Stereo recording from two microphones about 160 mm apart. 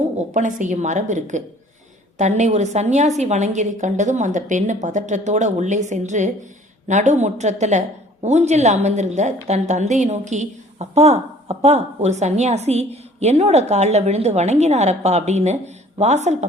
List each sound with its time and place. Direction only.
0.3 s a woman's voice: 50° right (ahead or behind)